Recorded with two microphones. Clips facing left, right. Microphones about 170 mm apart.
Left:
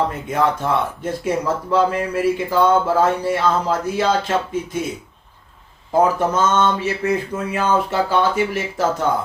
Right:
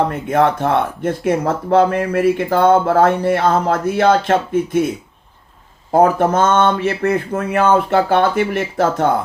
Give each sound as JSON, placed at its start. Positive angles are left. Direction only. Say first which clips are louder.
{"t": 0.1, "sound": "speech", "louder": "right 4 dB", "side_deg": -55}
{"t": 5.9, "sound": "speech", "louder": "right 4 dB", "side_deg": -60}